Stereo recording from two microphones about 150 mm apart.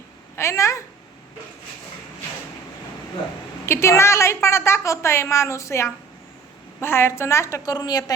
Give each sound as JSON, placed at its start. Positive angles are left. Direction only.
{"t": 0.3, "sound": "speech", "side_deg": 20}
{"t": 3.7, "sound": "a woman's voice", "side_deg": 20}